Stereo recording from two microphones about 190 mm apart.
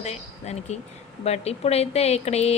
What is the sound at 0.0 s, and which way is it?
Speech, 35° left (ahead or behind).